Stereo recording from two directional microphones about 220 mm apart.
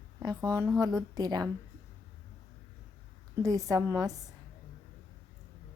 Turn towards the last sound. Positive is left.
turn(degrees=-15)  # may be behind; listen again after turning